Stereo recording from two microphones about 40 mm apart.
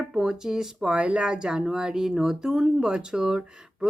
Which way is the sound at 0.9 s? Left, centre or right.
Right.